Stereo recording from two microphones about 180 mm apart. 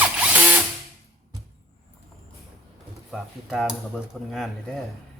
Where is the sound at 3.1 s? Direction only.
Centre (ahead or behind).